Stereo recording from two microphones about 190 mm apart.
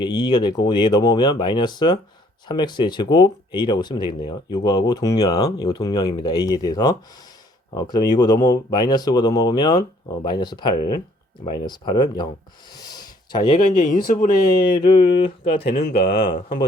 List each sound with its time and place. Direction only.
0.0 s speech: 20° left (ahead or behind)
12.8 s a sound: 20° left (ahead or behind)
13.6 s speech: 45° left (ahead or behind)
14.8 s speech: 25° left (ahead or behind)
15.7 s speech: 55° left (ahead or behind)